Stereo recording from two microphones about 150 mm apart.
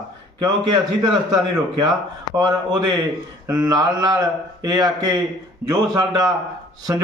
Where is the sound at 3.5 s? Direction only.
25° right (ahead or behind).